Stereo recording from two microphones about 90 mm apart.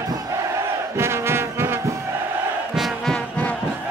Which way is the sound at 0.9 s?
30° right (ahead or behind).